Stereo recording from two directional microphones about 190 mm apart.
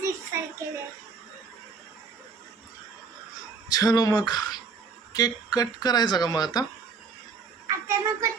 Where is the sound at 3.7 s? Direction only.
20° left (ahead or behind).